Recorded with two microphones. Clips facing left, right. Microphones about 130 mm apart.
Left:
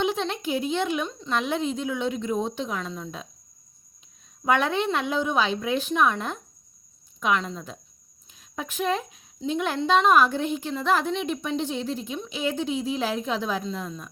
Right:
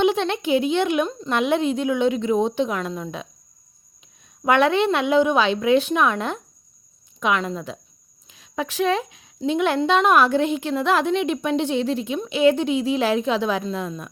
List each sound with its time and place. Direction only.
0.0 s speech: 70° right (ahead or behind)
4.4 s speech: 75° right (ahead or behind)
8.3 s speech: 90° right; by 14.1 s 75° right (ahead or behind)